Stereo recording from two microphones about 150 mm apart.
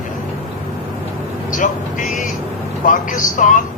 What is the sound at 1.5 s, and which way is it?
A man's voice, 60° left (ahead or behind).